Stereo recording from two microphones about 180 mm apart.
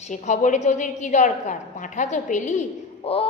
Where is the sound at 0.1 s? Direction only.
40° left (ahead or behind).